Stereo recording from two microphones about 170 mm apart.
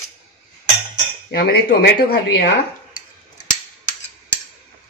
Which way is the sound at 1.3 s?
65° left (ahead or behind).